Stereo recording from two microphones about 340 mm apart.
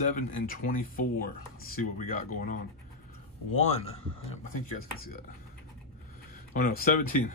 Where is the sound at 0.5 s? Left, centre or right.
Left.